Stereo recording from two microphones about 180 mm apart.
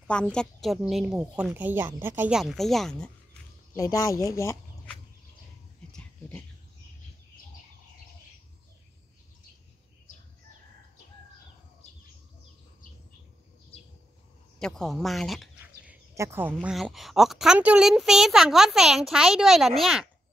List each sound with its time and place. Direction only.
0.0 s speech: 5° left (ahead or behind)
2.4 s speech: centre (ahead or behind)
3.7 s speech: 20° left (ahead or behind)
5.9 s dog: 10° left (ahead or behind)
14.6 s speech: centre (ahead or behind)
15.6 s a sound: 10° right (ahead or behind)
16.5 s speech: 5° right (ahead or behind)